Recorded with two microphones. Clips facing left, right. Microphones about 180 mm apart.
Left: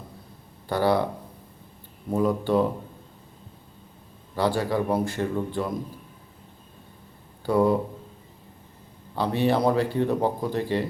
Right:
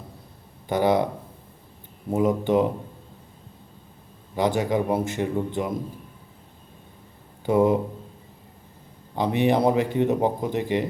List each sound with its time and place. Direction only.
0.7 s a man's voice: 20° right (ahead or behind)
2.0 s a man's voice: 20° right (ahead or behind)
4.4 s a man's voice: 20° right (ahead or behind)
7.4 s a man's voice: 20° right (ahead or behind)
9.1 s speech: 15° right (ahead or behind)